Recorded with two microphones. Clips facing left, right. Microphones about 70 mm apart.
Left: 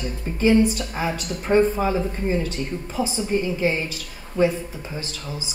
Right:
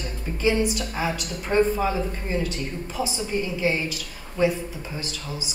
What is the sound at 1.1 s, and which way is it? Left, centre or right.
Speech, left.